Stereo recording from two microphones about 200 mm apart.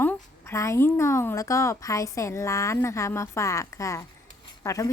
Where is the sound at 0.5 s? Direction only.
15° left (ahead or behind).